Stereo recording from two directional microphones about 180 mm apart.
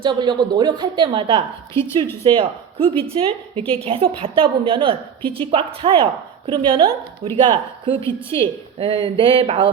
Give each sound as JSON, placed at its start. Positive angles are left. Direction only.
{"t": 0.0, "sound": "a woman's voice", "side_deg": -25}
{"t": 1.7, "sound": "a woman's voice", "side_deg": 15}
{"t": 2.2, "sound": "a woman's voice", "side_deg": -30}